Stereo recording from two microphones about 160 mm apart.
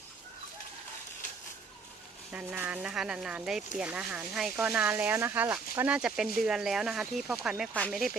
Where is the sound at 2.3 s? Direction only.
10° right (ahead or behind).